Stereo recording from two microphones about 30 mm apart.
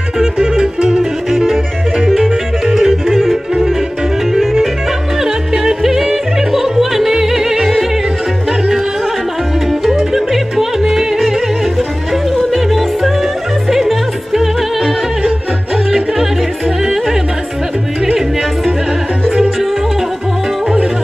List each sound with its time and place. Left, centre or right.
0.4 s music: right
1.3 s music: centre
4.3 s music: centre
5.2 s yodeling: centre
8.5 s music: centre
10.1 s music: centre